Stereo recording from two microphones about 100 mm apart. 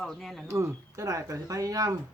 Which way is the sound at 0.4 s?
30° right (ahead or behind).